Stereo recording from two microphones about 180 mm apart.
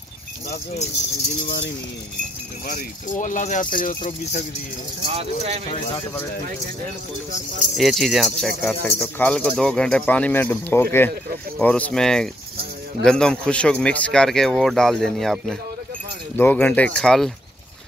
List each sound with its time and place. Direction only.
2.7 s speech: 45° left (ahead or behind)
5.0 s speech: 35° right (ahead or behind)
7.7 s speech: centre (ahead or behind)